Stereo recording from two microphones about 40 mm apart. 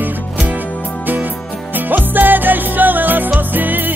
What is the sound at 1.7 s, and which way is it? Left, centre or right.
Music, right.